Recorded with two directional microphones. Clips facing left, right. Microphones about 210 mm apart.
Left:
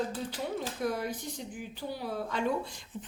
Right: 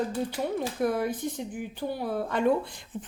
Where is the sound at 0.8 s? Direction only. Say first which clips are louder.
Right 7 dB; 55° right (ahead or behind).